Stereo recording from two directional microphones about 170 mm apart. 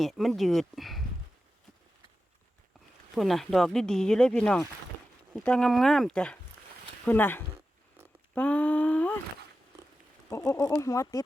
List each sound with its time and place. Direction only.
0.0 s speech: centre (ahead or behind)
3.2 s speech: centre (ahead or behind)
8.4 s a sound: 10° left (ahead or behind)
10.2 s speech: 15° left (ahead or behind)